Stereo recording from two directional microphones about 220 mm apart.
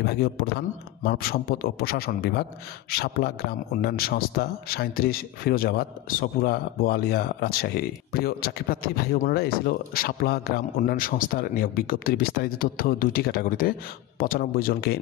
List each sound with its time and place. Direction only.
0.0 s speech: 45° left (ahead or behind)